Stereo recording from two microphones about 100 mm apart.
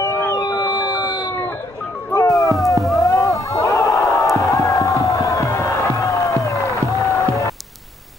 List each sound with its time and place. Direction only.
0.0 s music: 30° left (ahead or behind)
2.5 s music: centre (ahead or behind)
3.0 s a sound: 35° left (ahead or behind)
3.5 s crowd: 30° left (ahead or behind)
4.0 s music: 30° left (ahead or behind)